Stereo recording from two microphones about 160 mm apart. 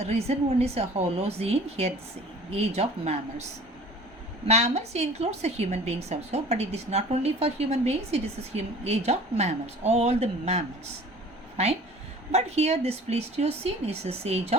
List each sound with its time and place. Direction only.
0.0 s a woman's voice: 40° right (ahead or behind)
4.4 s a woman's voice: 45° right (ahead or behind)